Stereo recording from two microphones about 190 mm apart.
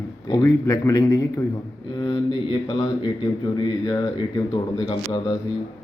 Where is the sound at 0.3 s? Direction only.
20° left (ahead or behind).